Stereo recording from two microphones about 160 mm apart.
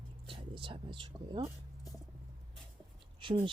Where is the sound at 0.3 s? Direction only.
35° right (ahead or behind).